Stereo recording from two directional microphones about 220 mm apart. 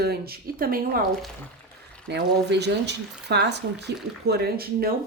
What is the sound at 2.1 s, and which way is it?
Speech, 50° right (ahead or behind).